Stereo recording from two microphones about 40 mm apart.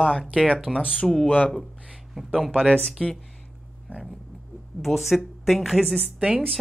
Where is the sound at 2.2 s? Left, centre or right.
Centre.